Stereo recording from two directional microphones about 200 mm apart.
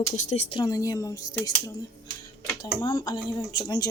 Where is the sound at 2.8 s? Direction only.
20° left (ahead or behind).